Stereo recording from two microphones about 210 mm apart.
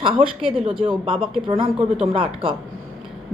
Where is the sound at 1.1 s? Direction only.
Centre (ahead or behind).